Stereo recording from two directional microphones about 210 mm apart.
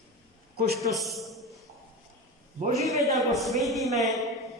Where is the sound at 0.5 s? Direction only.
50° right (ahead or behind).